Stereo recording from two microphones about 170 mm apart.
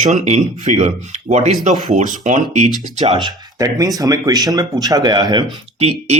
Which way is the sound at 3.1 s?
25° right (ahead or behind).